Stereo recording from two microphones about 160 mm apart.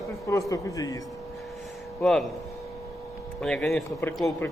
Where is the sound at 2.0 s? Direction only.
5° left (ahead or behind).